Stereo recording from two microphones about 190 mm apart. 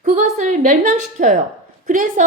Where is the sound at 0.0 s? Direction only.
40° right (ahead or behind).